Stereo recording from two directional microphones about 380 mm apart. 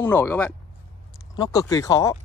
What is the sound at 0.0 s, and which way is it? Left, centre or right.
Speech, centre.